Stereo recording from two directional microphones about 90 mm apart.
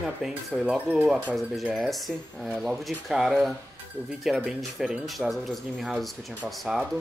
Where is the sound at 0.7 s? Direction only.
20° right (ahead or behind).